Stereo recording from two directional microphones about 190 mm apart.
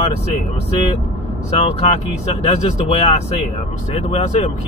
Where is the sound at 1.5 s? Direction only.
30° left (ahead or behind).